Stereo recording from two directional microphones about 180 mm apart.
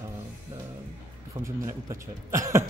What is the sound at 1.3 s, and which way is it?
Speech, 15° right (ahead or behind).